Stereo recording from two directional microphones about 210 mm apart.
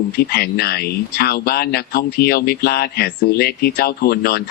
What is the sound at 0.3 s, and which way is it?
Speech, 50° left (ahead or behind).